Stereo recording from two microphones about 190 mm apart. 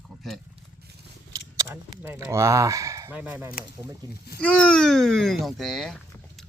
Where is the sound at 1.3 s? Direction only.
20° right (ahead or behind).